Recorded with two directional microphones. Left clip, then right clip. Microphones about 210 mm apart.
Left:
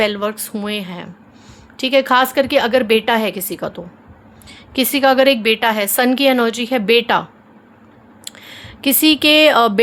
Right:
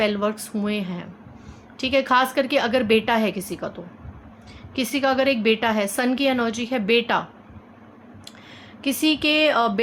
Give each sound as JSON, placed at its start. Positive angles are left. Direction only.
{"t": 0.0, "sound": "a woman's voice", "side_deg": 35}